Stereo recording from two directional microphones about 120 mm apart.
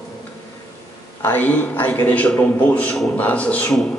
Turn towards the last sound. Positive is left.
turn(degrees=10)  # may be behind; listen again after turning